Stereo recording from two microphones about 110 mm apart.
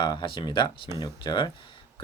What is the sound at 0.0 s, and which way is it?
Speech, 45° left (ahead or behind).